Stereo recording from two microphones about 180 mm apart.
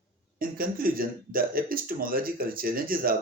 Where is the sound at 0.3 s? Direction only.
55° right (ahead or behind).